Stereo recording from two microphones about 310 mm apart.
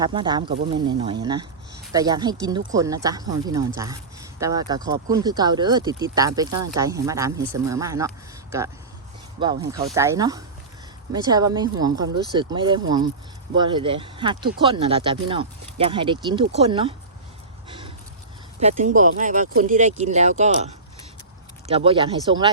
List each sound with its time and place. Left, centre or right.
0.0 s speech: centre
9.4 s speech: centre
17.7 s a sound: centre
18.6 s speech: right